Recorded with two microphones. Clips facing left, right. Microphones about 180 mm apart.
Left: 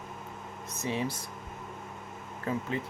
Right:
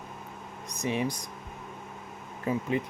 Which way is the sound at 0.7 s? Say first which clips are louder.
Right 3 dB; 15° right (ahead or behind).